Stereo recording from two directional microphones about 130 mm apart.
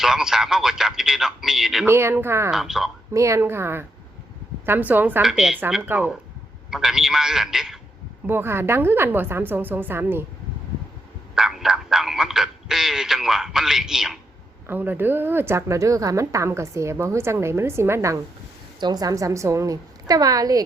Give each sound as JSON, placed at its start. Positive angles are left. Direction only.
{"t": 0.0, "sound": "speech", "side_deg": -5}
{"t": 1.9, "sound": "a woman's voice", "side_deg": -20}
{"t": 2.5, "sound": "speech", "side_deg": -5}
{"t": 3.1, "sound": "a woman's voice", "side_deg": -25}
{"t": 5.2, "sound": "a woman's voice", "side_deg": -5}
{"t": 8.3, "sound": "a woman's voice", "side_deg": -15}
{"t": 11.3, "sound": "speech", "side_deg": -5}
{"t": 14.7, "sound": "a woman's voice", "side_deg": -15}
{"t": 18.8, "sound": "a woman's voice", "side_deg": -30}